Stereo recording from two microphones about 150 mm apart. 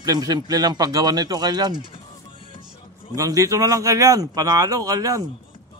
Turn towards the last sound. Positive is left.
turn(degrees=-25)  # may be behind; listen again after turning